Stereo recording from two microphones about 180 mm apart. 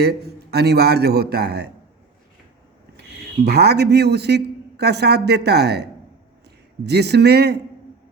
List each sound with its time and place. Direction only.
0.0 s a man's voice: 60° right (ahead or behind)
3.4 s a man's voice: 65° right (ahead or behind)